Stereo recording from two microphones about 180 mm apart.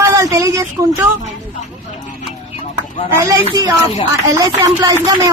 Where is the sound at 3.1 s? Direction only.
15° right (ahead or behind).